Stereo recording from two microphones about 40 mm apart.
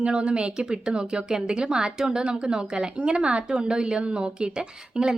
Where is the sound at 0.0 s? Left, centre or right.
Right.